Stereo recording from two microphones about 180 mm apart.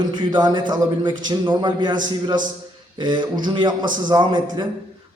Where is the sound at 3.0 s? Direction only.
25° right (ahead or behind).